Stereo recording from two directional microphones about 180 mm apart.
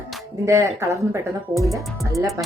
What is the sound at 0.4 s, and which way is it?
Speech, 15° right (ahead or behind).